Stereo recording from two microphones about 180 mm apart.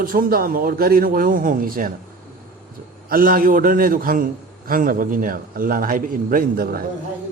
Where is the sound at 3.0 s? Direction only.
50° right (ahead or behind).